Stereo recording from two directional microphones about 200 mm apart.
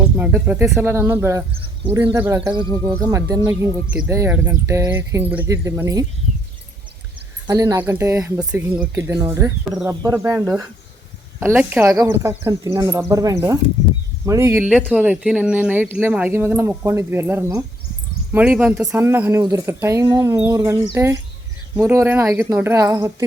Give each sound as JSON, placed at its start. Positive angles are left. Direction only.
{"t": 0.2, "sound": "speech", "side_deg": -10}
{"t": 7.4, "sound": "speech", "side_deg": -15}
{"t": 9.6, "sound": "speech", "side_deg": -5}
{"t": 9.9, "sound": "speech", "side_deg": -15}